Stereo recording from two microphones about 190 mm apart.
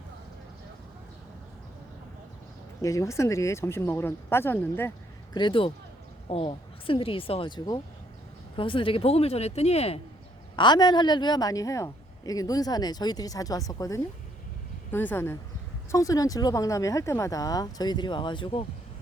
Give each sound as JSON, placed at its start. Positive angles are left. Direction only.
{"t": 2.8, "sound": "speech", "side_deg": 15}
{"t": 5.3, "sound": "a woman's voice", "side_deg": 25}
{"t": 10.6, "sound": "a woman's voice", "side_deg": 25}